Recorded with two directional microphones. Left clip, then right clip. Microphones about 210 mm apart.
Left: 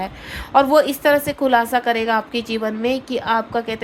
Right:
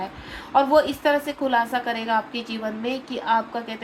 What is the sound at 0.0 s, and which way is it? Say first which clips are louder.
A woman's voice: left 5 dB; 50° left (ahead or behind).